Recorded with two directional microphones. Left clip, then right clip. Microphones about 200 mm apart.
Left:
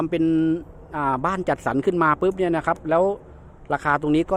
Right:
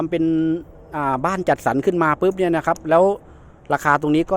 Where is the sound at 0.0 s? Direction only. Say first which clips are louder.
Right 1 dB; 10° right (ahead or behind).